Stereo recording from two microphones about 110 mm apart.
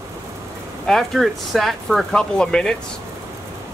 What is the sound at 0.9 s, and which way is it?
Speech, centre (ahead or behind).